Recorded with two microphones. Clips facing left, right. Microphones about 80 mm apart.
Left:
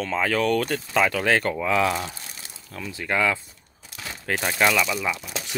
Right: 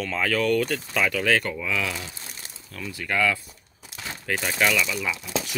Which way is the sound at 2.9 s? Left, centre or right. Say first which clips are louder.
Left 1 dB; left.